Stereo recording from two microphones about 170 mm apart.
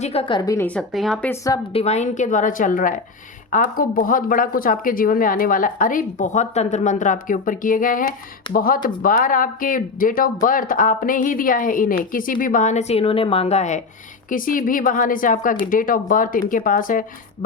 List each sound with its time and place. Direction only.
0.0 s a woman's voice: 35° left (ahead or behind); by 1.4 s 5° left (ahead or behind)
1.7 s speech: 40° left (ahead or behind)
14.3 s speech: 55° left (ahead or behind)